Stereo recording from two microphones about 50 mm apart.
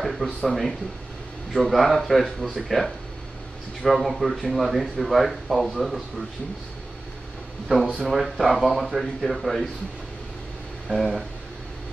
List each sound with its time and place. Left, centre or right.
0.0 s a sound: centre
0.5 s speech: centre
7.6 s speech: centre
10.9 s speech: centre